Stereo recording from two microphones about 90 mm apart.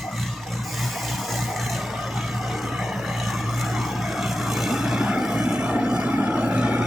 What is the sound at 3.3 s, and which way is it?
Vehicle, centre (ahead or behind).